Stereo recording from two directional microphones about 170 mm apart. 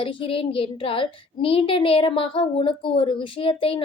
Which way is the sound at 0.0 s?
30° left (ahead or behind).